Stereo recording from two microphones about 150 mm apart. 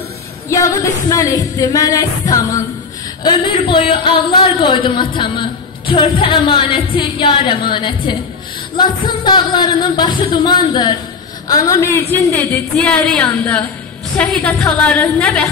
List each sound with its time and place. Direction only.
0.5 s music: 20° left (ahead or behind)
3.4 s music: 35° left (ahead or behind)
11.4 s a woman's voice: 25° left (ahead or behind)